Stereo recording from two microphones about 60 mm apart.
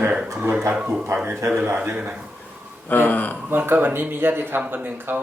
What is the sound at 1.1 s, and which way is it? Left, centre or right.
Speech, right.